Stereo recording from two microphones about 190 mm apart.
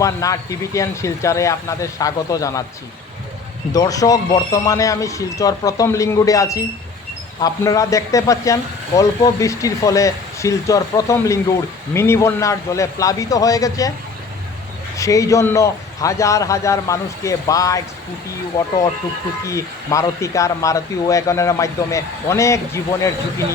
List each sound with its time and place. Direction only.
0.0 s speech: 15° left (ahead or behind)
3.7 s speech: 20° left (ahead or behind)
14.9 s speech: 15° left (ahead or behind)
19.5 s speech: 15° left (ahead or behind)